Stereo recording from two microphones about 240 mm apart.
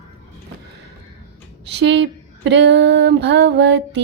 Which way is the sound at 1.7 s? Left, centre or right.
Right.